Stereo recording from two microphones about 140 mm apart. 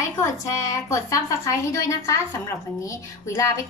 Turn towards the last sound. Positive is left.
turn(degrees=20)  # may be behind; listen again after turning